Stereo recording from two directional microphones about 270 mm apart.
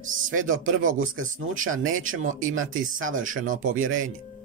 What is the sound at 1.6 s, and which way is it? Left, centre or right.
Speech, right.